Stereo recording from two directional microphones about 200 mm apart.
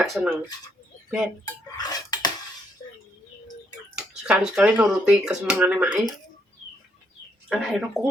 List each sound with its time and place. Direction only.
0.0 s speech: 5° right (ahead or behind)
1.8 s a sound: 20° left (ahead or behind)
4.2 s speech: 5° right (ahead or behind)
7.5 s speech: centre (ahead or behind)